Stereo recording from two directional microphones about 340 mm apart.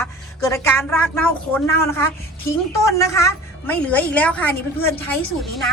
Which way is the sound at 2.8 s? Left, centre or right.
Centre.